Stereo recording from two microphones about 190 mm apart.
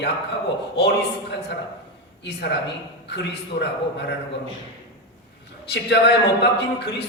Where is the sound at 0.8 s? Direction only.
60° left (ahead or behind).